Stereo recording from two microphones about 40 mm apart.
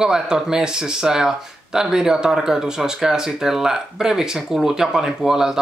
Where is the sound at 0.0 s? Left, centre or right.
Centre.